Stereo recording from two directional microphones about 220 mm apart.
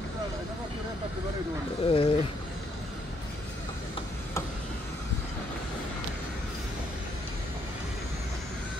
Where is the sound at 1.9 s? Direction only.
25° left (ahead or behind).